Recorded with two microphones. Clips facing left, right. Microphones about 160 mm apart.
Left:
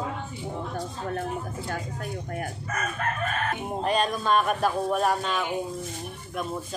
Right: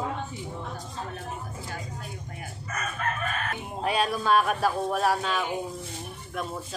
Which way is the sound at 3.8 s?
5° right (ahead or behind).